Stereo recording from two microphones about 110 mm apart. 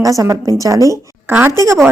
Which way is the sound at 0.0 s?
30° right (ahead or behind).